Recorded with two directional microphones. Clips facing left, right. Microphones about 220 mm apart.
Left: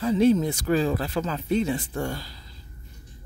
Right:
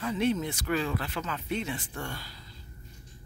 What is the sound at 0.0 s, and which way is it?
Speech, 35° left (ahead or behind).